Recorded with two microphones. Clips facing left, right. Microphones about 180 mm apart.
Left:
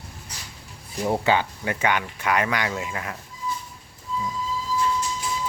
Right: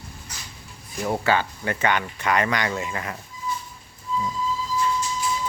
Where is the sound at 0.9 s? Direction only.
25° left (ahead or behind); by 3.2 s centre (ahead or behind).